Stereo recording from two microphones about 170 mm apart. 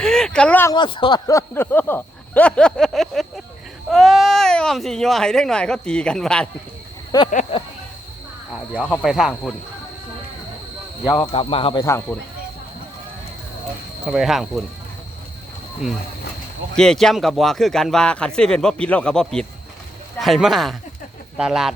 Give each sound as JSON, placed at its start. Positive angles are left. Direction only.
{"t": 0.0, "sound": "a sound", "side_deg": 5}
{"t": 0.7, "sound": "speech", "side_deg": 30}
{"t": 7.1, "sound": "speech", "side_deg": 20}
{"t": 7.5, "sound": "speech", "side_deg": 35}
{"t": 8.8, "sound": "speech", "side_deg": 0}
{"t": 11.0, "sound": "speech", "side_deg": 20}
{"t": 11.3, "sound": "speech", "side_deg": 30}
{"t": 11.9, "sound": "speech", "side_deg": 15}
{"t": 14.1, "sound": "speech", "side_deg": 0}
{"t": 16.7, "sound": "speech", "side_deg": 5}